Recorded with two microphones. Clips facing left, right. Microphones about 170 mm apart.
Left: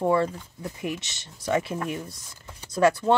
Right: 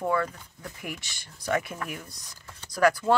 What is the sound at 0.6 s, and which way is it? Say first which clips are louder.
Speech: left 7 dB; 20° left (ahead or behind).